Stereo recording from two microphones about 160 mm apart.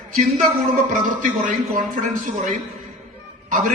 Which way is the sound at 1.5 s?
55° right (ahead or behind).